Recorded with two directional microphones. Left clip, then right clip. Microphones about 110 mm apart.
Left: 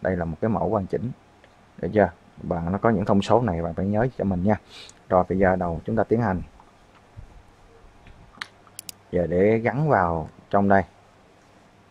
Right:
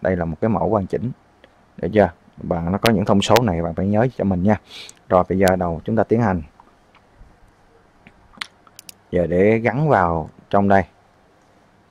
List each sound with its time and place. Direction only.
0.0 s speech: 25° right (ahead or behind)
8.4 s a sound: 25° right (ahead or behind)
9.1 s speech: 25° right (ahead or behind)